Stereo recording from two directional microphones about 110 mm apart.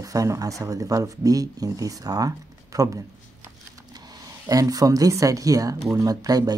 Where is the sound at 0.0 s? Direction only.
30° right (ahead or behind).